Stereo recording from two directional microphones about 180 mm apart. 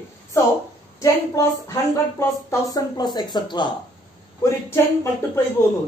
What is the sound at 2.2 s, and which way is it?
Speech, 15° left (ahead or behind).